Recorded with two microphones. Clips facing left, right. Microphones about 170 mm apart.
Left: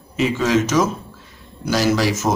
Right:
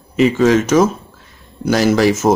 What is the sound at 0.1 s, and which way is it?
Speech, 55° right (ahead or behind).